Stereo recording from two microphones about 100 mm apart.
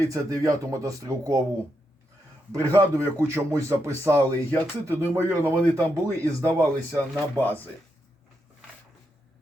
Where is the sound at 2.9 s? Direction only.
30° right (ahead or behind).